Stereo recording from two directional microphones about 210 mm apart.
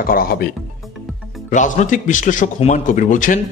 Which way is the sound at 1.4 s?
35° left (ahead or behind).